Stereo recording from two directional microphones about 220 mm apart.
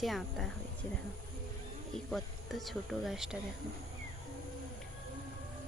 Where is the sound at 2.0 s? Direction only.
Centre (ahead or behind).